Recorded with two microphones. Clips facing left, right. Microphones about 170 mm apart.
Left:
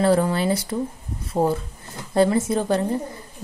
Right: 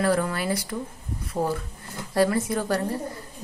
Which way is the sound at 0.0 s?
25° left (ahead or behind).